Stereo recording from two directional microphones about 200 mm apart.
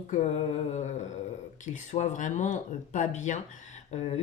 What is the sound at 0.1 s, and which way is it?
Speech, 35° left (ahead or behind).